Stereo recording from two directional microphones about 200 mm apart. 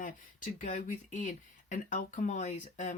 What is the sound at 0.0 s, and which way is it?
Speech, 40° left (ahead or behind).